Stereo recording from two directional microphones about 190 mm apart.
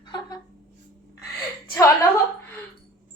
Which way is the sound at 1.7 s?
15° left (ahead or behind).